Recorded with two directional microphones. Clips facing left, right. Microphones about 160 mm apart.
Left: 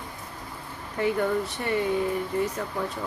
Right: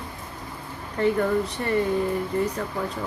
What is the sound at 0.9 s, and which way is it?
Speech, 5° left (ahead or behind).